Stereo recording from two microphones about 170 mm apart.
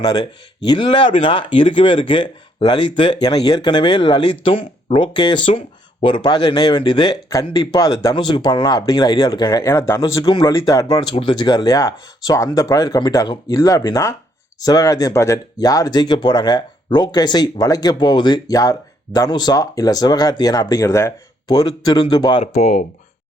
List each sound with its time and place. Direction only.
0.0 s speech: 25° left (ahead or behind)
22.6 s speech: 50° left (ahead or behind)